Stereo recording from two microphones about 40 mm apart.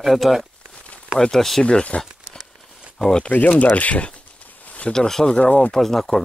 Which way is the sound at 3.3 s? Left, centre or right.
Left.